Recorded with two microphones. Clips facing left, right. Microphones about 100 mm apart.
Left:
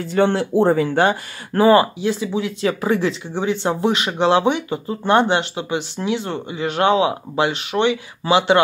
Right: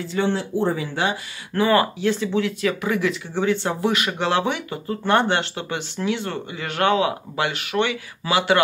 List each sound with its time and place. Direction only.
0.1 s speech: 60° left (ahead or behind)
1.6 s speech: 30° left (ahead or behind)
2.0 s speech: 15° left (ahead or behind)
2.6 s speech: 30° left (ahead or behind)